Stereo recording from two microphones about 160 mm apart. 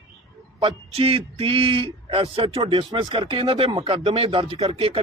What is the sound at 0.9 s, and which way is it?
A man's voice, 35° right (ahead or behind).